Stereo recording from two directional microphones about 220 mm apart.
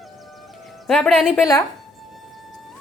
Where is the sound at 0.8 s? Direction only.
Centre (ahead or behind).